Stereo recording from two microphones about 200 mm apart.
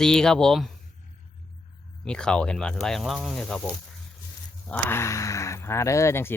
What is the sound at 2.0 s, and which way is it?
Speech, 5° left (ahead or behind).